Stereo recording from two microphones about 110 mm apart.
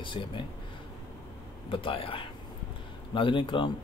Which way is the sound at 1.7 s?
55° left (ahead or behind).